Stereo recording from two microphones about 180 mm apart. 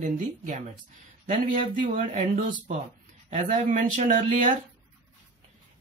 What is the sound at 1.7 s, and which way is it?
Speech, 45° right (ahead or behind).